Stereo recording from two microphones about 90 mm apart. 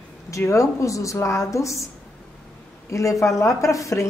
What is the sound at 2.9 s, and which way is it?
Speech, 35° left (ahead or behind).